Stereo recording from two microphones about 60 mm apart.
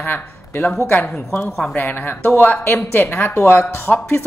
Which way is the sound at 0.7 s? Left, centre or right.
Left.